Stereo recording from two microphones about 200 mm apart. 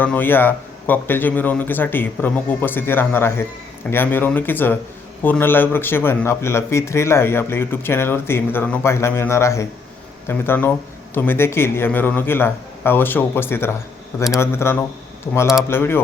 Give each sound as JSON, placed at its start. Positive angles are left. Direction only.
{"t": 0.0, "sound": "speech", "side_deg": 10}